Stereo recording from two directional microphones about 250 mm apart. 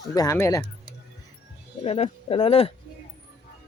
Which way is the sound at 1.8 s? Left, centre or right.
Left.